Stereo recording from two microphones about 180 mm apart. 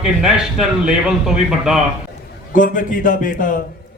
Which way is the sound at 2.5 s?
50° left (ahead or behind).